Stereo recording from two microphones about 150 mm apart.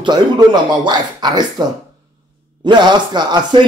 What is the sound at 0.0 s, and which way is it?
Speech, 30° right (ahead or behind).